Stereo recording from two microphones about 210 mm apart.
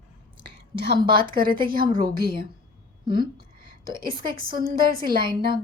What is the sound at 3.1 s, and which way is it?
A woman's voice, 45° right (ahead or behind).